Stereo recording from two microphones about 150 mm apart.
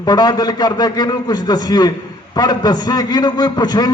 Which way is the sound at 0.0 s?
25° left (ahead or behind).